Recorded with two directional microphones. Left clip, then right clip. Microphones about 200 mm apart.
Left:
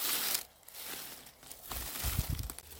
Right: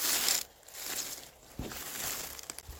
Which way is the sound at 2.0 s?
Centre (ahead or behind).